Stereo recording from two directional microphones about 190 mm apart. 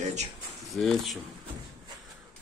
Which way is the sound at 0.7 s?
Centre (ahead or behind).